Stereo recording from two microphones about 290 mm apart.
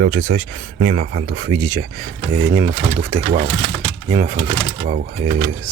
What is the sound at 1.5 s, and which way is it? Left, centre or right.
Speech, centre.